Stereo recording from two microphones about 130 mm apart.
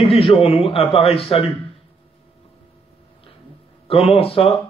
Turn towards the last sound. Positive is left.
turn(degrees=50)  # may be behind; listen again after turning